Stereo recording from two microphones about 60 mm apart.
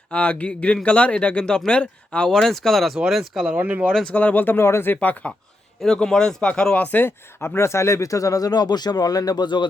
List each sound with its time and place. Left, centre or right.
0.1 s speech: left; by 3.5 s centre
3.5 s speech: right
4.1 s speech: left
4.9 s speech: left
5.8 s speech: centre
6.5 s speech: left
6.9 s speech: left